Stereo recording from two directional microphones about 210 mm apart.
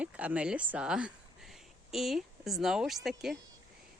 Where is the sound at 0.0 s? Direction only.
5° right (ahead or behind).